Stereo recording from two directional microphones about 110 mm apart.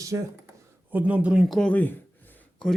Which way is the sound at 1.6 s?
15° left (ahead or behind).